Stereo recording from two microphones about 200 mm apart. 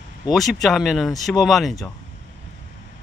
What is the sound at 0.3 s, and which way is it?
Speech, centre (ahead or behind).